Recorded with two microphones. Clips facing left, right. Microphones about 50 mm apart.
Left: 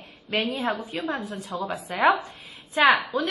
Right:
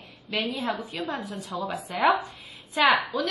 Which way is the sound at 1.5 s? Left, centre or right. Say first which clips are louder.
Left 2 dB; centre.